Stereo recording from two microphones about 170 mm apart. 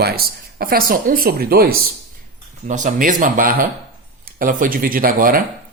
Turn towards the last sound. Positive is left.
turn(degrees=-55)  # may be behind; listen again after turning